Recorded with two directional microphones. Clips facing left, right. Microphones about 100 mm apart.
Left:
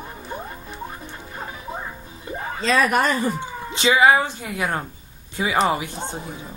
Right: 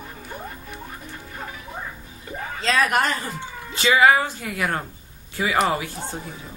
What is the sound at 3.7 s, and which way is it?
A woman's voice, 20° left (ahead or behind).